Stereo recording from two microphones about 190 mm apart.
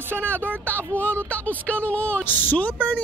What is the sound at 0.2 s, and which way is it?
Speech, 5° left (ahead or behind).